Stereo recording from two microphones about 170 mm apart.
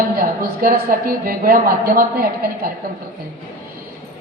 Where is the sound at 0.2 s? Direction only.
55° right (ahead or behind).